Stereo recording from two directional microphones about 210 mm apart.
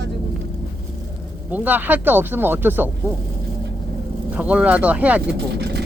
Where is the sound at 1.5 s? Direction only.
10° right (ahead or behind).